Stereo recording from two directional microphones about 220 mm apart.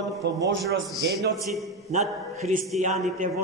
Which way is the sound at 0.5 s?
55° right (ahead or behind).